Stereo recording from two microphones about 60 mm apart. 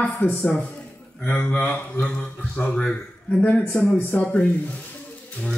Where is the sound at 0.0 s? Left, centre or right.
Left.